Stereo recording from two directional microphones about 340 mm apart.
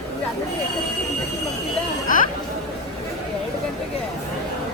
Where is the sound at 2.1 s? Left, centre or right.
Left.